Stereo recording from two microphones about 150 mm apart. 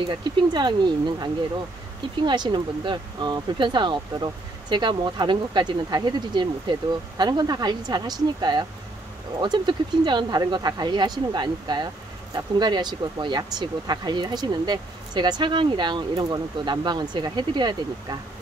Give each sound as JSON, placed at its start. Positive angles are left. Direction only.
{"t": 0.0, "sound": "speech", "side_deg": -30}